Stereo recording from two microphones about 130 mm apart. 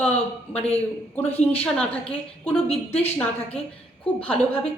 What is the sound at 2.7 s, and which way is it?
Speech, 50° left (ahead or behind).